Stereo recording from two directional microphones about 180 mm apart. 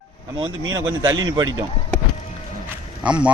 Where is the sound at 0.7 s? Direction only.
25° right (ahead or behind).